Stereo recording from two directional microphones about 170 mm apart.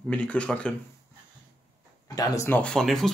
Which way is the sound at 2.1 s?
20° left (ahead or behind).